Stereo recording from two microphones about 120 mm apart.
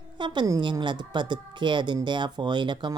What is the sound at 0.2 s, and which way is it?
Speech, 35° right (ahead or behind).